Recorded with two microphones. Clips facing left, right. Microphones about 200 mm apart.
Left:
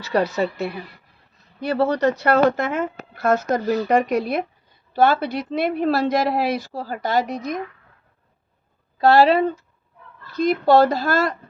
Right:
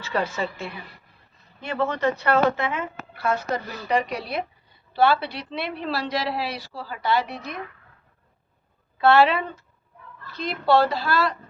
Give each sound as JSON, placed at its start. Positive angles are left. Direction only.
{"t": 0.0, "sound": "speech", "side_deg": 40}
{"t": 0.4, "sound": "a woman's voice", "side_deg": 65}
{"t": 1.6, "sound": "a woman's voice", "side_deg": 40}
{"t": 9.0, "sound": "a woman's voice", "side_deg": 35}